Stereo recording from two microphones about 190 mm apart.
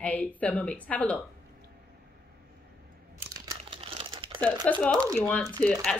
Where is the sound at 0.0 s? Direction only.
5° left (ahead or behind).